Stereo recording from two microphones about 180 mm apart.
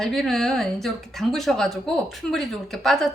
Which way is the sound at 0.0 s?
Centre (ahead or behind).